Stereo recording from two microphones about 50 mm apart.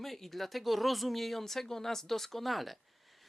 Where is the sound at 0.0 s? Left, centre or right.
Centre.